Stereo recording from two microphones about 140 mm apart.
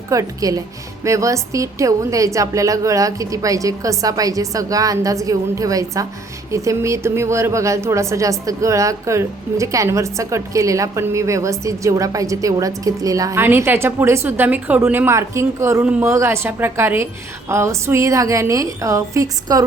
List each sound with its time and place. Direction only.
0.1 s a woman's voice: 25° right (ahead or behind)
15.8 s a woman's voice: 10° right (ahead or behind)
16.0 s a woman's voice: 20° right (ahead or behind)